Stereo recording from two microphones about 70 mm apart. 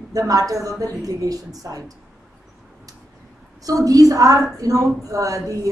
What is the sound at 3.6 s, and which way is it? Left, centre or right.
A woman's voice, right.